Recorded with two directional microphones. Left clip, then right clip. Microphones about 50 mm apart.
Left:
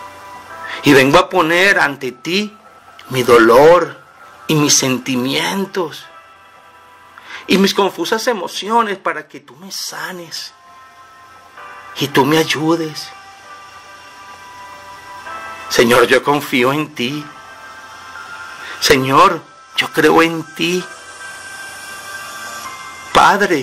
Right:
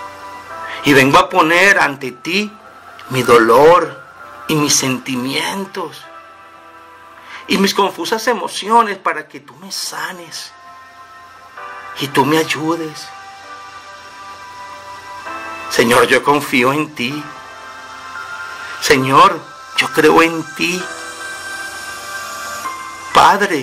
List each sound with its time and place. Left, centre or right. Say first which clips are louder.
0.0 s music: right 3 dB; right
0.7 s music: left 1 dB; left
1.2 s speech: right 2 dB; left
7.2 s speech: left 2 dB; left
11.5 s music: right 4 dB; right
11.9 s speech: left 1 dB; left
14.2 s music: right 3 dB; right
15.7 s speech: left 1 dB; left
17.3 s music: right 3 dB; right
18.7 s speech: even; left
20.9 s music: right 5 dB; right
23.1 s speech: even; left